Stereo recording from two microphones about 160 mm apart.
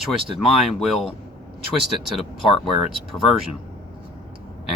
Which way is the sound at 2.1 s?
Centre (ahead or behind).